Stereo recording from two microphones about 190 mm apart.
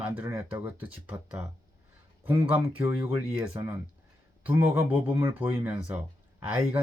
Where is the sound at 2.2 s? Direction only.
10° right (ahead or behind).